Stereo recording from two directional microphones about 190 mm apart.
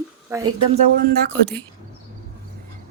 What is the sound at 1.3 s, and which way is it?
Speech, 5° left (ahead or behind).